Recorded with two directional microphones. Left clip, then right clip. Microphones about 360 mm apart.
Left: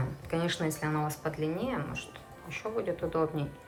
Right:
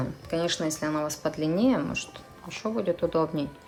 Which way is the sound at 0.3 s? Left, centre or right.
Centre.